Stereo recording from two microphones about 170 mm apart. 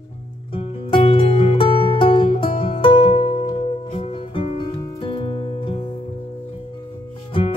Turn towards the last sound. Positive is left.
turn(degrees=30)  # may be behind; listen again after turning